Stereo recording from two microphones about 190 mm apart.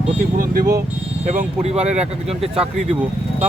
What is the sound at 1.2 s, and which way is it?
Speech, 35° right (ahead or behind).